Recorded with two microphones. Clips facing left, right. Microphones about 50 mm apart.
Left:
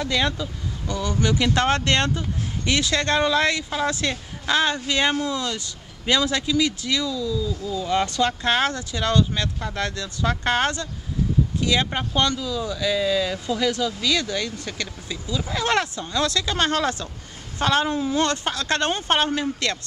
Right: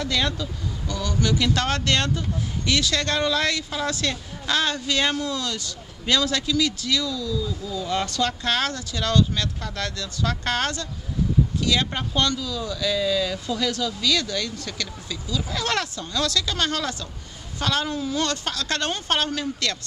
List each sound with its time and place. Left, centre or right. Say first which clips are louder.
0.0 s speech: left 2 dB; centre